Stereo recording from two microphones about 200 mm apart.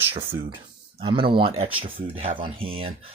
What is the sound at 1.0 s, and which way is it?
Speech, 25° right (ahead or behind).